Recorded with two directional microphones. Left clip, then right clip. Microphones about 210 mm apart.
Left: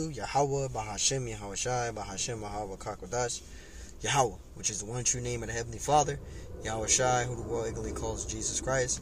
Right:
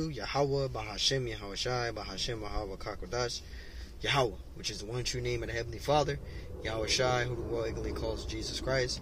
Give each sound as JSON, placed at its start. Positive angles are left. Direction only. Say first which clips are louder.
{"t": 0.2, "sound": "speech", "louder": "left 2 dB", "side_deg": 20}